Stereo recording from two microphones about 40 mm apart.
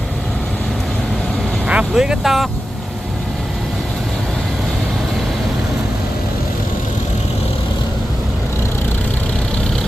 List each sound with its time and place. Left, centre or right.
1.6 s vehicle: right
2.2 s speech: centre